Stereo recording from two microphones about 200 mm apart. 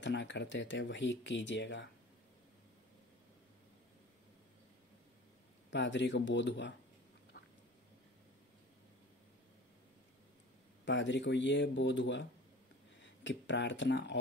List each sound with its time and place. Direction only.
0.0 s speech: 65° left (ahead or behind)
5.7 s speech: 65° left (ahead or behind)
7.3 s a sound: 50° left (ahead or behind)
10.9 s speech: 65° left (ahead or behind)